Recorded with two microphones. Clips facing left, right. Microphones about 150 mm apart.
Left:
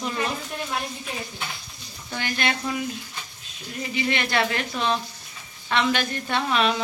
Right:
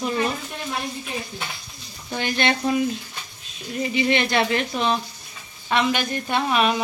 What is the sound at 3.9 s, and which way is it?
Speech, 20° right (ahead or behind).